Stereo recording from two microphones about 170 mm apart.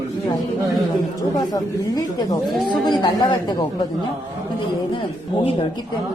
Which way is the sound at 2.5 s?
Centre (ahead or behind).